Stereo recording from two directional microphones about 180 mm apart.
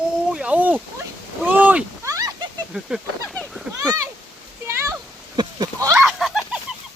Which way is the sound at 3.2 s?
5° left (ahead or behind).